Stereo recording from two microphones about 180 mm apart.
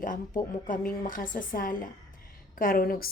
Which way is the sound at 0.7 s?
50° left (ahead or behind).